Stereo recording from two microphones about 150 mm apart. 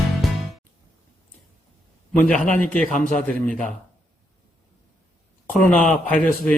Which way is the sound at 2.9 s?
60° left (ahead or behind).